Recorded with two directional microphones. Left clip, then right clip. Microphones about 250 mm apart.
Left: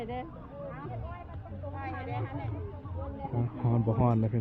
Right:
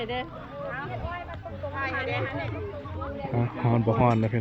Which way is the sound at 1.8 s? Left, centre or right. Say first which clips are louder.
Right 10 dB; centre.